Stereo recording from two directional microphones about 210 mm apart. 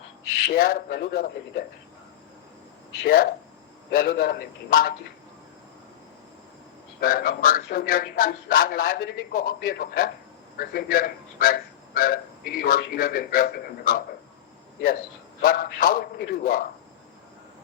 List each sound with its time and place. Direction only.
0.4 s speech: 45° left (ahead or behind)
3.0 s speech: 45° left (ahead or behind)
7.0 s speech: 45° left (ahead or behind)
15.4 s speech: 45° left (ahead or behind)